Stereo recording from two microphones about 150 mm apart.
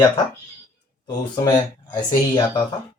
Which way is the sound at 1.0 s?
25° left (ahead or behind).